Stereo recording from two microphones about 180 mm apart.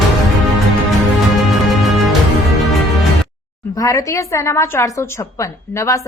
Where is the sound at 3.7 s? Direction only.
20° left (ahead or behind).